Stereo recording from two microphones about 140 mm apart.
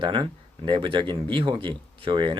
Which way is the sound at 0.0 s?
35° right (ahead or behind).